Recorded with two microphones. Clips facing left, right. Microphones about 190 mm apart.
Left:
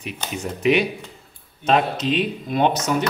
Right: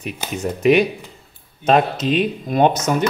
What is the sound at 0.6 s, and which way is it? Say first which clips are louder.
Speech: right 4 dB; 45° right (ahead or behind).